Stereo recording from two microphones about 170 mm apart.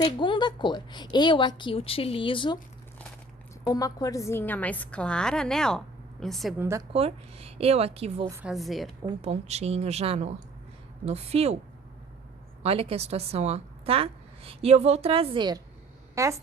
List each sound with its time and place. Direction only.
0.0 s a woman's voice: 30° left (ahead or behind)
3.7 s a woman's voice: 20° left (ahead or behind); by 6.5 s centre (ahead or behind)
6.6 s a woman's voice: 15° right (ahead or behind)
6.9 s a woman's voice: 35° right (ahead or behind)
8.4 s a woman's voice: centre (ahead or behind)
9.0 s a woman's voice: 35° right (ahead or behind)
12.6 s a woman's voice: 35° right (ahead or behind); by 16.3 s 15° right (ahead or behind)